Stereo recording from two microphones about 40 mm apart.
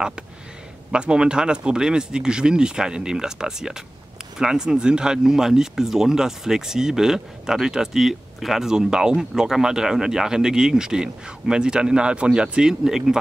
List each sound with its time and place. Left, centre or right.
0.9 s speech: right; by 8.6 s centre
8.6 s speech: centre